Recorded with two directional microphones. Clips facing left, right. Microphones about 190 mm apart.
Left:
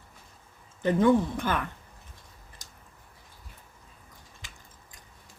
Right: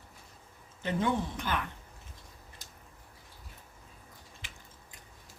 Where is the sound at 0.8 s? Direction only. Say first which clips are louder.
Left 9 dB; 50° left (ahead or behind).